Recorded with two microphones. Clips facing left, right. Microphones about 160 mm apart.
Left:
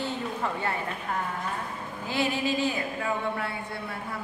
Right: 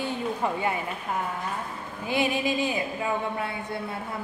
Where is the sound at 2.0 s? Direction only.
15° right (ahead or behind).